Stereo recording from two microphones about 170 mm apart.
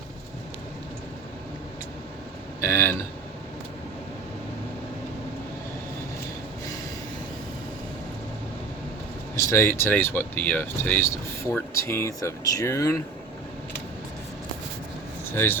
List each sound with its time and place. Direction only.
2.6 s speech: 15° left (ahead or behind)
9.3 s speech: 15° left (ahead or behind)
15.3 s speech: 15° left (ahead or behind)